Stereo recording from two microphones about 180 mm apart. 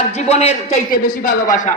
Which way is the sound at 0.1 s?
35° left (ahead or behind).